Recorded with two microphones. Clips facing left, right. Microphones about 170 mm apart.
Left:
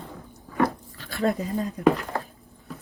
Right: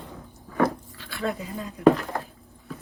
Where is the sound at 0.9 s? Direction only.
40° left (ahead or behind).